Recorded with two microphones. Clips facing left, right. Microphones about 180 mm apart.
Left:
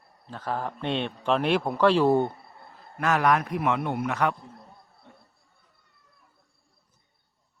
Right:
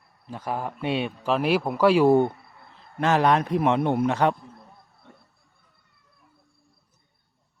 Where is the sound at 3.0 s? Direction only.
30° right (ahead or behind).